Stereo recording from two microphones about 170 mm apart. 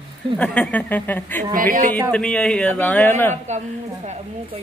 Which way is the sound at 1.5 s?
55° right (ahead or behind).